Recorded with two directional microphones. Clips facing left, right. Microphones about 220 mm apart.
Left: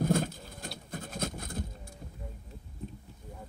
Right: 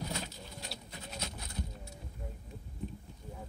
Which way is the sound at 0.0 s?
50° left (ahead or behind).